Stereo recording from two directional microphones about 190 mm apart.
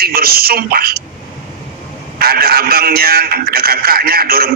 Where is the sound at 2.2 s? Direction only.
55° right (ahead or behind).